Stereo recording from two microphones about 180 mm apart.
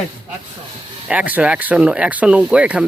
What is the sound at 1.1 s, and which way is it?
Speech, 10° right (ahead or behind).